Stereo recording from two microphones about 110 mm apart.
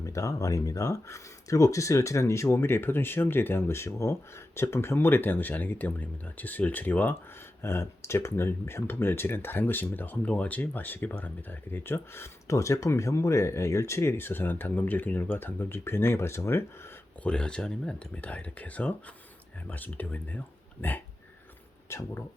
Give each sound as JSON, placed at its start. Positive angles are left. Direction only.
{"t": 0.0, "sound": "speech", "side_deg": 25}
{"t": 17.2, "sound": "speech", "side_deg": 10}